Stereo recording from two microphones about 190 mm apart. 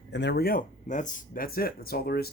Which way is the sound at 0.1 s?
65° left (ahead or behind).